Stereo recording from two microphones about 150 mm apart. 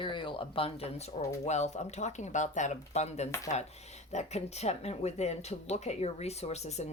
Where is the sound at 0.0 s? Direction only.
35° left (ahead or behind).